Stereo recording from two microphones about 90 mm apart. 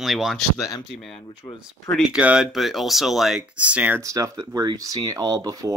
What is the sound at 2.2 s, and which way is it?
Speech, 10° right (ahead or behind).